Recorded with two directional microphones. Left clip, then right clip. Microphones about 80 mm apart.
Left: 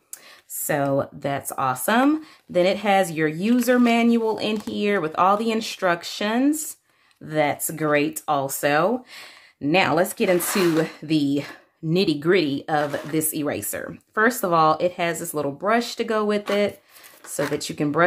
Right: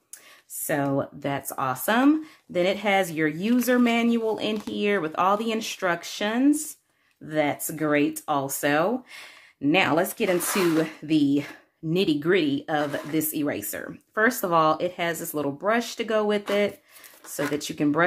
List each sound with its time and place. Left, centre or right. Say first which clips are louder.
0.7 s speech: left 3 dB; left
7.2 s speech: left 3 dB; left